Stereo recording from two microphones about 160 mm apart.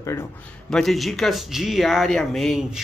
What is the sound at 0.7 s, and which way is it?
Speech, 5° left (ahead or behind).